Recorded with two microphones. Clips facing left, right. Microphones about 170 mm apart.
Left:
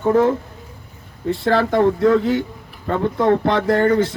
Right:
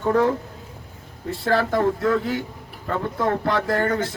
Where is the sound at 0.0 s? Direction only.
20° left (ahead or behind).